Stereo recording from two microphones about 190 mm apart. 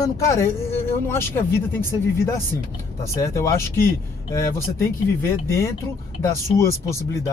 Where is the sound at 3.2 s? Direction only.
15° left (ahead or behind).